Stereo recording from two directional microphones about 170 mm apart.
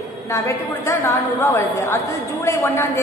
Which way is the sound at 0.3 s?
15° left (ahead or behind).